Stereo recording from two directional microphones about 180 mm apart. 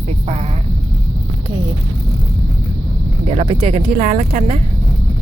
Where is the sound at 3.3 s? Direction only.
35° right (ahead or behind).